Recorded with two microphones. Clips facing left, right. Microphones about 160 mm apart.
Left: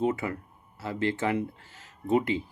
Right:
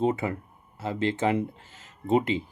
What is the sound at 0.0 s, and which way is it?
Speech, 25° right (ahead or behind).